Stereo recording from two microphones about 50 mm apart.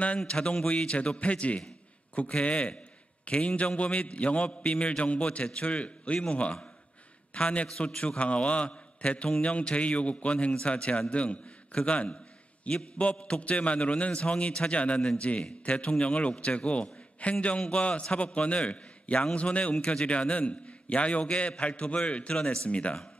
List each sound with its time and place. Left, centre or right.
0.3 s a man's voice: centre